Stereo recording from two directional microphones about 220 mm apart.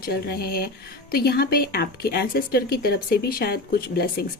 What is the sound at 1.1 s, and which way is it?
Speech, 45° left (ahead or behind).